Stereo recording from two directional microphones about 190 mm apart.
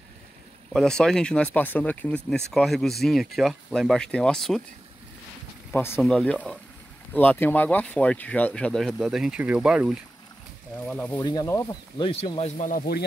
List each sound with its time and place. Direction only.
0.7 s speech: 5° left (ahead or behind)
5.7 s speech: 10° left (ahead or behind); by 9.9 s 5° right (ahead or behind)
10.9 s speech: 10° left (ahead or behind)
12.0 s speech: 30° left (ahead or behind); by 13.0 s 50° left (ahead or behind)